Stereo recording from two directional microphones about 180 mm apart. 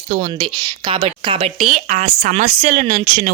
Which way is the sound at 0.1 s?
30° right (ahead or behind).